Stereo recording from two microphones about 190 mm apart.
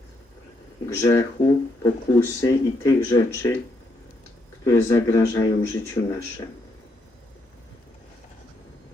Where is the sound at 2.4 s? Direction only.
15° left (ahead or behind).